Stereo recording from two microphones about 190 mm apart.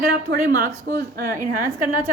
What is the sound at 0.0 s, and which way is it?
A woman's voice, 50° right (ahead or behind).